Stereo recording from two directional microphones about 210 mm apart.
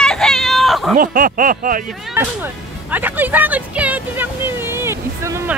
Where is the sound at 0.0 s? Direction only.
Centre (ahead or behind).